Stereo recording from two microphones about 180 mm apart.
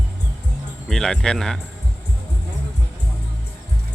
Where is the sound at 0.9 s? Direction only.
5° left (ahead or behind).